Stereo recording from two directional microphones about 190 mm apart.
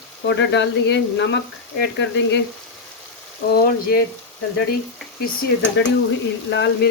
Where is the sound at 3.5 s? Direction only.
50° left (ahead or behind).